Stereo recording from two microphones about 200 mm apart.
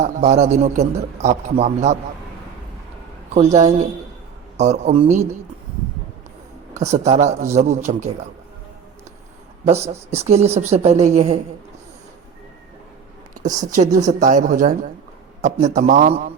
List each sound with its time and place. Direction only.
0.0 s a man's voice: 35° right (ahead or behind)
3.3 s a man's voice: 35° right (ahead or behind)
6.7 s a man's voice: 35° right (ahead or behind)
9.6 s a man's voice: 30° right (ahead or behind)
13.4 s a man's voice: 35° right (ahead or behind)